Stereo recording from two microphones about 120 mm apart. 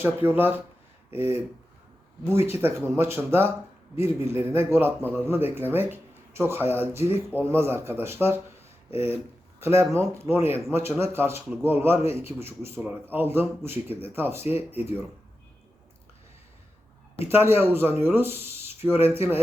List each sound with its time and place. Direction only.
0.0 s speech: 15° right (ahead or behind)
9.6 s speech: 20° right (ahead or behind)
17.2 s speech: 20° right (ahead or behind)